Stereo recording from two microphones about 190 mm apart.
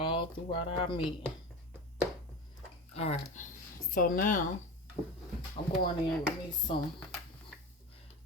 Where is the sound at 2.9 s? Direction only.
35° left (ahead or behind).